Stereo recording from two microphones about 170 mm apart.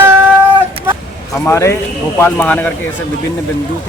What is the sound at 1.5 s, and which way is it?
Speech, 15° left (ahead or behind).